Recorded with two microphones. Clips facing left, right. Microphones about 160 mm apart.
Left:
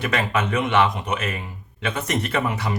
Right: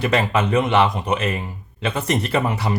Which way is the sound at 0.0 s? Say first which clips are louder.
Right 4 dB; 30° right (ahead or behind).